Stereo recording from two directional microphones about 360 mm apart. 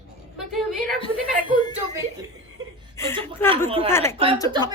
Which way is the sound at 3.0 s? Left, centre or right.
Centre.